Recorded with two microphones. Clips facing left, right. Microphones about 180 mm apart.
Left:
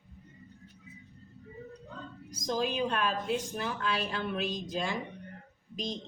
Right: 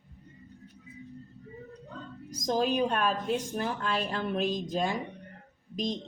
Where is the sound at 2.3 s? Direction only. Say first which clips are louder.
Right 4 dB; 45° right (ahead or behind).